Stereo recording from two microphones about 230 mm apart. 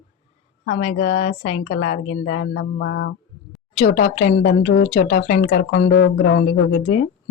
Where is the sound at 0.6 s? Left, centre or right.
Left.